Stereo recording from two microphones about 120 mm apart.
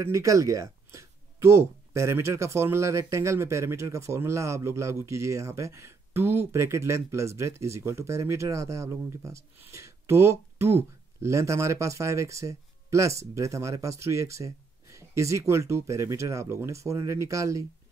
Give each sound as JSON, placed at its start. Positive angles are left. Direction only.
{"t": 0.0, "sound": "speech", "side_deg": -25}